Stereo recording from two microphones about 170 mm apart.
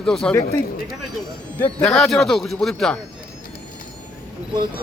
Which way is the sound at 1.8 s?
5° left (ahead or behind).